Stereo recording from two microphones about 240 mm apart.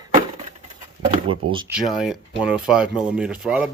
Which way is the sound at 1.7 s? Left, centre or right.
Centre.